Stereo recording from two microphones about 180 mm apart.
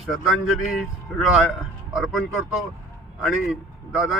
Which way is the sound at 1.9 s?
Centre (ahead or behind).